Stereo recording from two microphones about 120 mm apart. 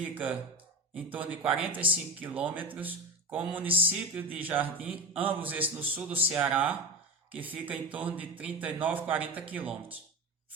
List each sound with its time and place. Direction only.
0.1 s speech: 10° right (ahead or behind)
1.7 s speech: 45° right (ahead or behind)
2.2 s speech: 15° right (ahead or behind)